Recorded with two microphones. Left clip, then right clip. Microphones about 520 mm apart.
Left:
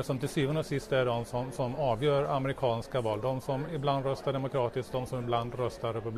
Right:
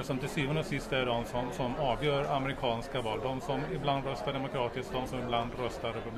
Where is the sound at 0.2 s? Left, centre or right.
Left.